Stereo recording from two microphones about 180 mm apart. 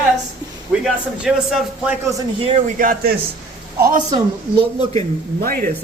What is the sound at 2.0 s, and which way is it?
Speech, 15° right (ahead or behind).